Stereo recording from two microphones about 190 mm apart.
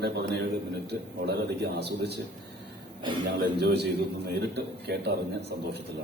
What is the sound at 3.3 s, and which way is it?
A man's voice, 60° right (ahead or behind).